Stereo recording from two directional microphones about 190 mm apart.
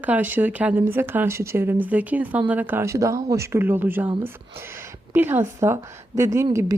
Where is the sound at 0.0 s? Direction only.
10° right (ahead or behind).